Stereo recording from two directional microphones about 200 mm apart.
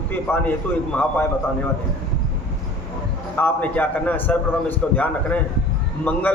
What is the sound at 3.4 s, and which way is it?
A man's voice, 10° left (ahead or behind).